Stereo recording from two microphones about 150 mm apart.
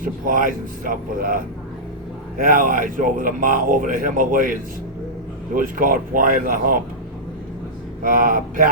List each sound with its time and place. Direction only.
0.0 s a man's voice: 65° right (ahead or behind)
5.5 s a man's voice: 65° right (ahead or behind)
8.0 s a man's voice: 70° right (ahead or behind)